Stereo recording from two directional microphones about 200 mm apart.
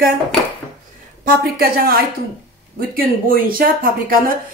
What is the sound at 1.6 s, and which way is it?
Speech, 50° right (ahead or behind).